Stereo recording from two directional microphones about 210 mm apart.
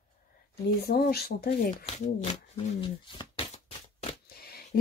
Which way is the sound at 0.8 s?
45° left (ahead or behind).